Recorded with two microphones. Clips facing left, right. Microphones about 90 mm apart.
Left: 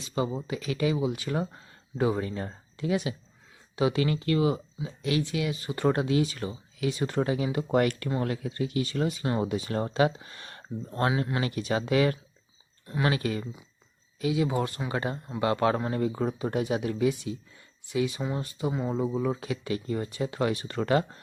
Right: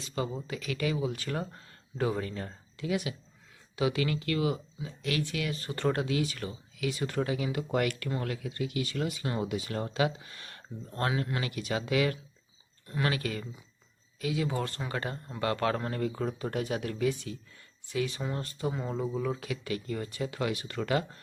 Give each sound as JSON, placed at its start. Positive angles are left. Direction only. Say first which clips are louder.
{"t": 0.0, "sound": "speech", "louder": "left 4 dB", "side_deg": 20}
{"t": 6.0, "sound": "speech", "louder": "left 4 dB", "side_deg": 25}
{"t": 12.9, "sound": "speech", "louder": "left 4 dB", "side_deg": 25}